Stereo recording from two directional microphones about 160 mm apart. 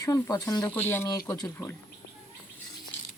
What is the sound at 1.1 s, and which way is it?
Speech, 25° left (ahead or behind).